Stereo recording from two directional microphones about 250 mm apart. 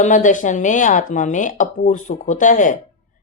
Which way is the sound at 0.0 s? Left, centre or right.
Left.